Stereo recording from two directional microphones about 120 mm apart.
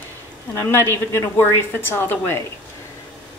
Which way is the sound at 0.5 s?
20° left (ahead or behind).